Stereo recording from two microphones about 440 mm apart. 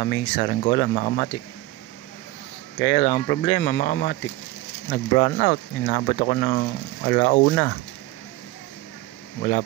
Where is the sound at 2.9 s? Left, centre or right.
Centre.